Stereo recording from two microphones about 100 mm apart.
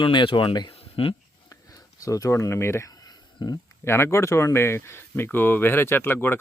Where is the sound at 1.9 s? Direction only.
35° left (ahead or behind).